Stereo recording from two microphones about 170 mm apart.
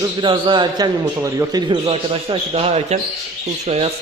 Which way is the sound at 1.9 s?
35° right (ahead or behind).